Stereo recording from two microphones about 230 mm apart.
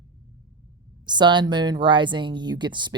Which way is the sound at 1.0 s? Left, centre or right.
Centre.